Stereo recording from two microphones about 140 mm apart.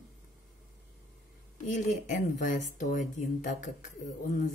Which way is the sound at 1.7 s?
65° left (ahead or behind).